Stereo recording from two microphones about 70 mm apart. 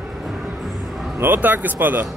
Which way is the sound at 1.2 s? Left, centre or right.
Right.